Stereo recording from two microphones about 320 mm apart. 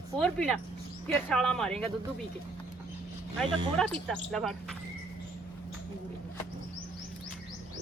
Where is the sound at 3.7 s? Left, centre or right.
Centre.